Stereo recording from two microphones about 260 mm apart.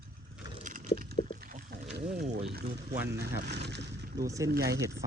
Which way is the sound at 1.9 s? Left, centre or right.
Right.